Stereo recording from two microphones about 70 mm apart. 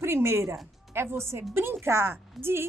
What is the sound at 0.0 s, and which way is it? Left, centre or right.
Speech, right.